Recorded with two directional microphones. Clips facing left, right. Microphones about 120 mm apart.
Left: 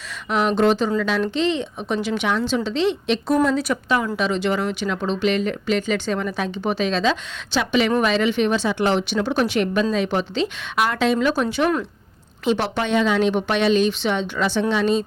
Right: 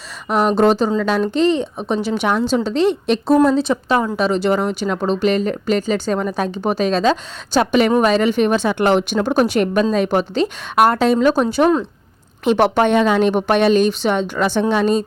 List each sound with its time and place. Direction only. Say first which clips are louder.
0.3 s a woman's voice: right 4 dB; 40° right (ahead or behind)
3.4 s a woman's voice: right 5 dB; 25° right (ahead or behind)
12.5 s a woman's voice: right 7 dB; 55° right (ahead or behind)